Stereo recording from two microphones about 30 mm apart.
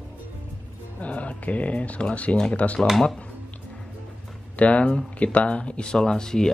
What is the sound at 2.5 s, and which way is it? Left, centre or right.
Speech, left.